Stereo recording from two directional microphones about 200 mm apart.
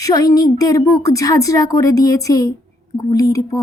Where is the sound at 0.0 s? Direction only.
20° left (ahead or behind).